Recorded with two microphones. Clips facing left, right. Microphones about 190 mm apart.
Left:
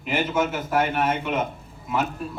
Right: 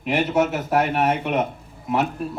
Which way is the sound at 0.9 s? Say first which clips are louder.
Right 3 dB; 35° right (ahead or behind).